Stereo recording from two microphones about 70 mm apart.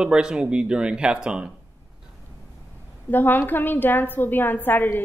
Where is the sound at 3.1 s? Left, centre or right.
Left.